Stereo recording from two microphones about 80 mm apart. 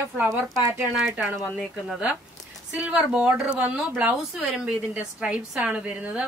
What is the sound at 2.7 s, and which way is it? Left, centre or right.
A woman's voice, centre.